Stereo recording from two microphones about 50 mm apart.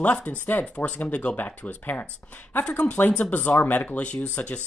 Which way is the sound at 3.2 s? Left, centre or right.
Left.